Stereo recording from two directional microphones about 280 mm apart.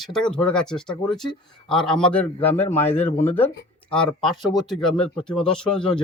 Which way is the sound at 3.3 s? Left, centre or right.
Centre.